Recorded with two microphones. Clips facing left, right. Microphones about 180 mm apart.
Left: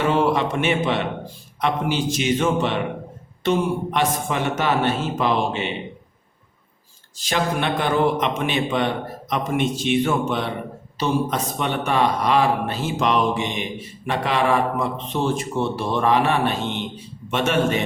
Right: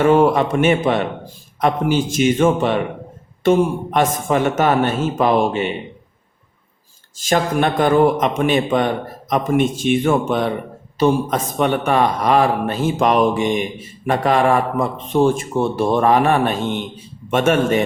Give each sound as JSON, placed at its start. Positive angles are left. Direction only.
{"t": 0.0, "sound": "a man's voice", "side_deg": -50}
{"t": 7.2, "sound": "a man's voice", "side_deg": -45}